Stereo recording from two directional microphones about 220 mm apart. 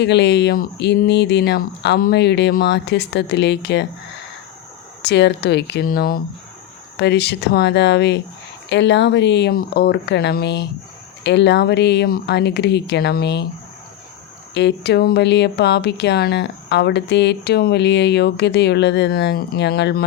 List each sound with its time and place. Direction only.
0.0 s speech: 50° left (ahead or behind)
5.0 s speech: 50° left (ahead or behind)
14.5 s speech: 50° left (ahead or behind)